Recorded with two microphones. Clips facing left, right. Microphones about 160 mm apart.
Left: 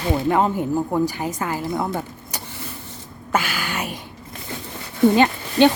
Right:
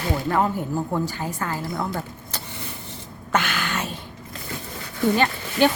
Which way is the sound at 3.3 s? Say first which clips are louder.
Left 1 dB; 5° left (ahead or behind).